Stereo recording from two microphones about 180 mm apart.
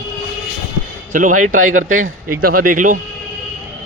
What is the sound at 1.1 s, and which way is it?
A man's voice, 45° right (ahead or behind).